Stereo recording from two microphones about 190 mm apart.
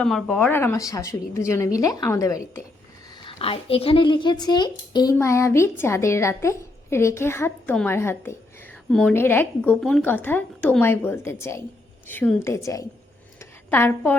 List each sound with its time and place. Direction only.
0.0 s a woman's voice: centre (ahead or behind); by 2.4 s 15° left (ahead or behind)
3.1 s a woman's voice: 30° left (ahead or behind)
13.4 s a sound: 10° left (ahead or behind)